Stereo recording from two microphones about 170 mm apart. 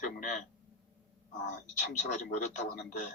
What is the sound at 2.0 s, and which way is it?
A man's voice, 45° left (ahead or behind).